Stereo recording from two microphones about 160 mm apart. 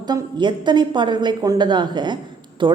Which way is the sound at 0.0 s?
25° right (ahead or behind).